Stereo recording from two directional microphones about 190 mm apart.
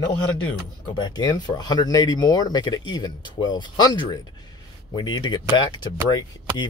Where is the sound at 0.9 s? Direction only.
20° left (ahead or behind).